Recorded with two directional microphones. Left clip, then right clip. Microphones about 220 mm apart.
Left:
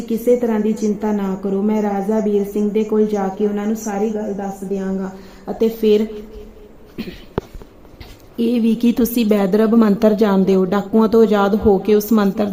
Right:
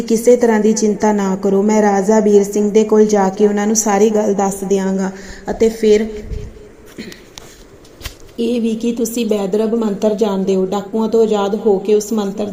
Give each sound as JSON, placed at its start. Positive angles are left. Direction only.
{"t": 0.3, "sound": "a woman's voice", "side_deg": -5}
{"t": 5.5, "sound": "a woman's voice", "side_deg": 5}
{"t": 8.4, "sound": "speech", "side_deg": 20}